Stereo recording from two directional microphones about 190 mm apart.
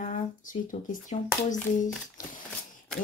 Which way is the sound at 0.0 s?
40° left (ahead or behind).